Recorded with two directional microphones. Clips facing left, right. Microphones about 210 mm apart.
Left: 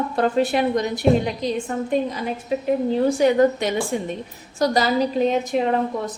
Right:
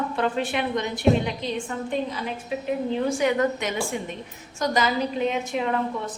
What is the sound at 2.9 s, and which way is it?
A woman's voice, 35° left (ahead or behind).